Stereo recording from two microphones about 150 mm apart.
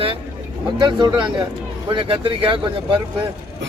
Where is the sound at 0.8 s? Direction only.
30° right (ahead or behind).